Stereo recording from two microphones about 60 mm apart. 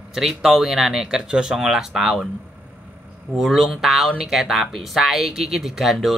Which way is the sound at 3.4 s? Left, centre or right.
Centre.